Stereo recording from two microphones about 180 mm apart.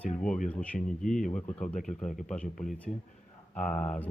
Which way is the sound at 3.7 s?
40° left (ahead or behind).